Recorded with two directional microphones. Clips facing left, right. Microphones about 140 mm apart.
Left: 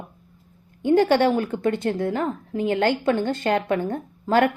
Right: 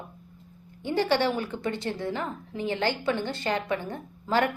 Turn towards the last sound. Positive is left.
turn(degrees=50)  # may be behind; listen again after turning